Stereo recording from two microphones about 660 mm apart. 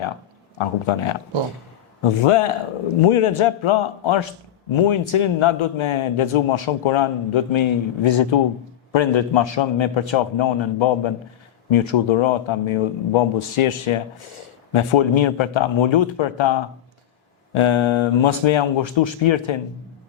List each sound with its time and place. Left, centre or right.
0.6 s a man's voice: left
2.2 s a man's voice: left